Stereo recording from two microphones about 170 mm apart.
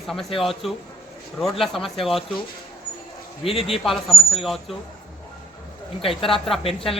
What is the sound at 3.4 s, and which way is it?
Speech, 35° left (ahead or behind).